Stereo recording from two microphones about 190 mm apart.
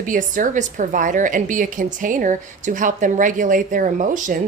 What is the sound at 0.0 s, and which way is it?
A woman's voice, 45° right (ahead or behind).